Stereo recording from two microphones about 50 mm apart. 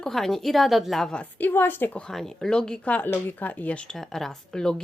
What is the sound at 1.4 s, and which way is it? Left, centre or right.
Speech, left.